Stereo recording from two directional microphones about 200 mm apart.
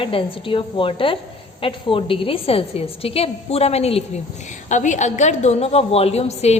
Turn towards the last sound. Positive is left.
turn(degrees=30)  # may be behind; listen again after turning